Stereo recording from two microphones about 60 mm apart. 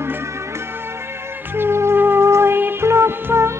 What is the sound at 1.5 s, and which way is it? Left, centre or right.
Music, right.